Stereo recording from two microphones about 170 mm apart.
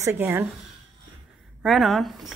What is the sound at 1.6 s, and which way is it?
Speech, centre (ahead or behind).